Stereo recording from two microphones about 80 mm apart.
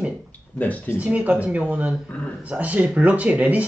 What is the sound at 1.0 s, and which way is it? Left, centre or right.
Speech, centre.